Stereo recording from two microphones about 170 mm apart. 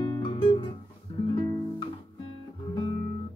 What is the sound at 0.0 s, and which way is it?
Guitar, 30° left (ahead or behind).